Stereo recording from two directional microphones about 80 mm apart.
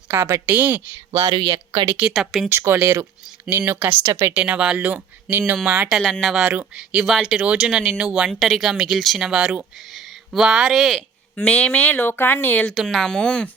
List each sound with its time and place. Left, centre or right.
0.4 s speech: right
1.4 s speech: right
2.0 s speech: centre
2.5 s speech: right
2.7 s speech: right
4.1 s speech: right
4.4 s speech: centre
6.0 s speech: centre
6.3 s speech: centre
7.1 s speech: centre
8.3 s speech: centre
11.3 s speech: centre
12.7 s speech: centre